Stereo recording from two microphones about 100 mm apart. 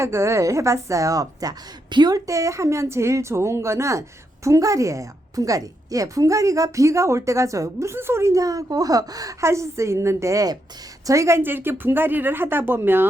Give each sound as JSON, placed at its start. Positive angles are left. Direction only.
{"t": 0.0, "sound": "a woman's voice", "side_deg": -30}